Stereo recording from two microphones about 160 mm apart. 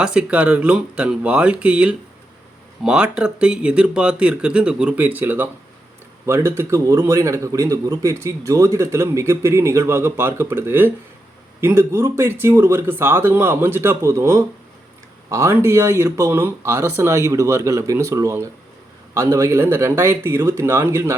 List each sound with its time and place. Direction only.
0.0 s a man's voice: 5° right (ahead or behind)